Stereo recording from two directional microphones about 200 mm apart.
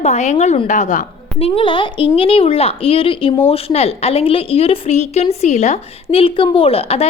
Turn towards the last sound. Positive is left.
turn(degrees=30)  # may be behind; listen again after turning